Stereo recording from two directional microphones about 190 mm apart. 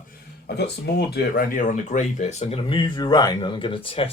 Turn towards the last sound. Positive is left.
turn(degrees=30)  # may be behind; listen again after turning